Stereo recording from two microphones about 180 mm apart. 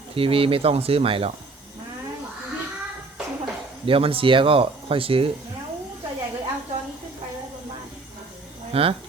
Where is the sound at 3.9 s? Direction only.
30° right (ahead or behind).